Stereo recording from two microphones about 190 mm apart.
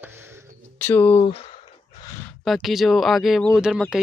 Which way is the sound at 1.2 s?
30° left (ahead or behind).